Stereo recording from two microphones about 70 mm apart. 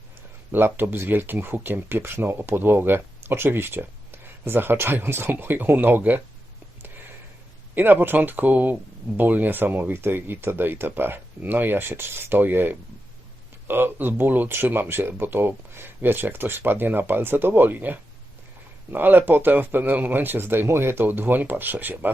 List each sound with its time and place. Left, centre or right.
0.5 s speech: right
7.8 s speech: right